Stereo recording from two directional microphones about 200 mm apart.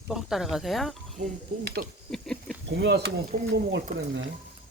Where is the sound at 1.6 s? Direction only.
55° right (ahead or behind).